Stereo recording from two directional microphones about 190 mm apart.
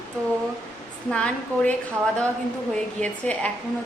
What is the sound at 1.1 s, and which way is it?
Speech, 5° left (ahead or behind).